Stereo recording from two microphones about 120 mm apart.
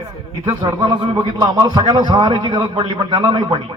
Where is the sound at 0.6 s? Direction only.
40° right (ahead or behind).